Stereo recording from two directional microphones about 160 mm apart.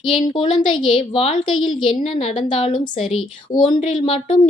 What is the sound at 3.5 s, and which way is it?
Speech, 25° left (ahead or behind).